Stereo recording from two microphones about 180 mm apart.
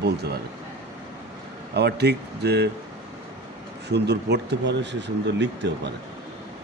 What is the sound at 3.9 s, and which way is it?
Speech, 70° right (ahead or behind).